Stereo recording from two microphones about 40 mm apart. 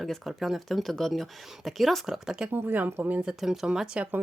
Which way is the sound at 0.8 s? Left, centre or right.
Centre.